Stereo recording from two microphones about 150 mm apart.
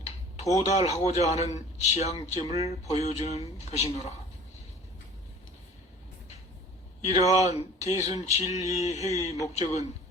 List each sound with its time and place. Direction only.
0.6 s a man's voice: 45° left (ahead or behind)
7.0 s a man's voice: 45° left (ahead or behind)